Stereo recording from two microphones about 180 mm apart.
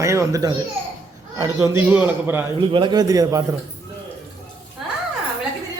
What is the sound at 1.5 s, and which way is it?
Speech, 15° right (ahead or behind).